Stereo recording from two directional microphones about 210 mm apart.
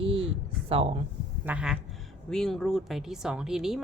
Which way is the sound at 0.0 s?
25° right (ahead or behind).